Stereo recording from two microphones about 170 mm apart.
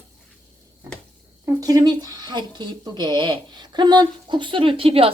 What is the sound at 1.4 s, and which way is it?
Speech, 20° right (ahead or behind).